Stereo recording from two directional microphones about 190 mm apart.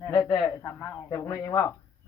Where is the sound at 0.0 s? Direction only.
15° left (ahead or behind).